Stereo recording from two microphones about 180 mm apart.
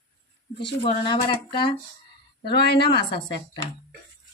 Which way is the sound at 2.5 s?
65° left (ahead or behind).